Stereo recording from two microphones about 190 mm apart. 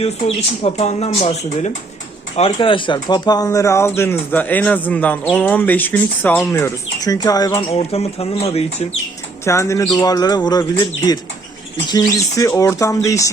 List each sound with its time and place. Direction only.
0.6 s speech: 35° left (ahead or behind)
7.8 s speech: 30° left (ahead or behind)
9.4 s speech: 15° left (ahead or behind)